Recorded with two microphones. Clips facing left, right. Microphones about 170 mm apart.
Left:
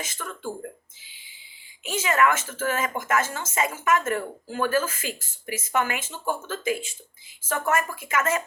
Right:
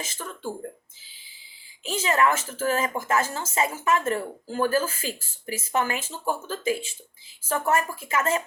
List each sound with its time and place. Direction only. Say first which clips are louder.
0.0 s speech: even; 30° right (ahead or behind)
1.8 s speech: even; 35° right (ahead or behind)